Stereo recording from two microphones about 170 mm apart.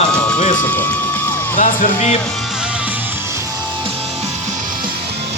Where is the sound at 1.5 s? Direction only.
45° left (ahead or behind).